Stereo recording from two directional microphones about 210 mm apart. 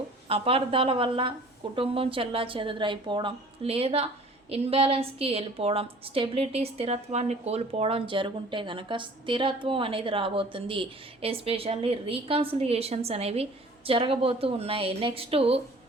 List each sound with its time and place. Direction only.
0.3 s speech: 25° right (ahead or behind)